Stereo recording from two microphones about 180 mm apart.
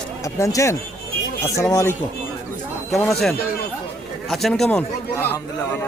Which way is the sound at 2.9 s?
Centre (ahead or behind).